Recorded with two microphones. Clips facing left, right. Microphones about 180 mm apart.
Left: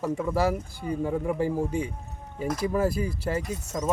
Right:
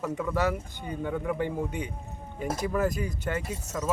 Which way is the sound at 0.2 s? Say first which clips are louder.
Left 1 dB; 30° left (ahead or behind).